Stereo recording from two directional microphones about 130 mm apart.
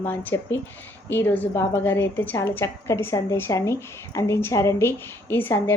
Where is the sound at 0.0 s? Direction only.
15° left (ahead or behind).